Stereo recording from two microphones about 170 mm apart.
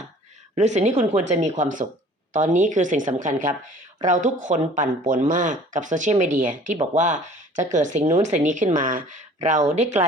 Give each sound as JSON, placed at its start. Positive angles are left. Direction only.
{"t": 0.5, "sound": "a woman's voice", "side_deg": -40}